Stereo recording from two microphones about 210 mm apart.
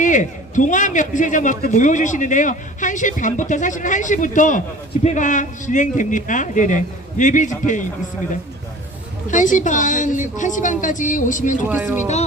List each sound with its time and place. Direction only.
0.0 s a man's voice: 35° left (ahead or behind)
9.3 s a man's voice: 35° left (ahead or behind)
11.7 s speech: 10° right (ahead or behind)